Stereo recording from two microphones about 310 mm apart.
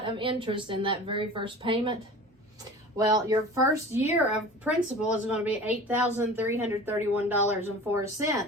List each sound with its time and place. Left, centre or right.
0.0 s speech: centre
3.0 s speech: centre